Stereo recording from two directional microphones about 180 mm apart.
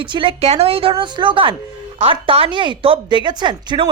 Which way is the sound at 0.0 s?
25° right (ahead or behind).